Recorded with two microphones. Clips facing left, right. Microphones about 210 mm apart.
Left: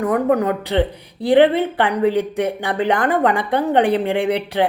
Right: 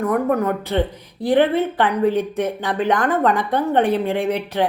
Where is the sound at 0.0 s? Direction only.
15° left (ahead or behind).